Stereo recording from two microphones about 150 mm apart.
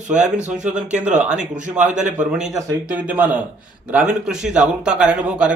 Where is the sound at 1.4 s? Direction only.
55° right (ahead or behind).